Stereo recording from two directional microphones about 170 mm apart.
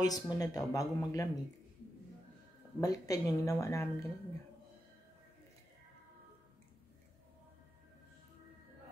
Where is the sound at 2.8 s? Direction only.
20° left (ahead or behind).